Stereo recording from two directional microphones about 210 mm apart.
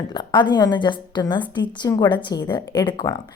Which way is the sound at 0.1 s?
20° left (ahead or behind).